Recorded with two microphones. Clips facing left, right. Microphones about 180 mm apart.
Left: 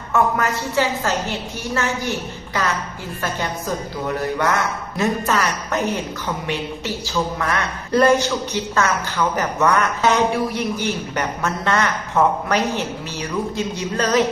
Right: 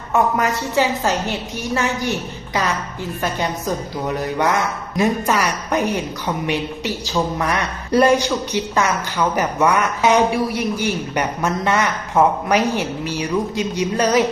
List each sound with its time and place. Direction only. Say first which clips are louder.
0.1 s a man's voice: right 1 dB; 15° right (ahead or behind)
4.9 s a man's voice: right 2 dB; 10° right (ahead or behind)